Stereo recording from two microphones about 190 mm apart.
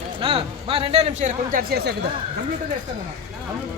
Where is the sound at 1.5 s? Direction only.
55° right (ahead or behind).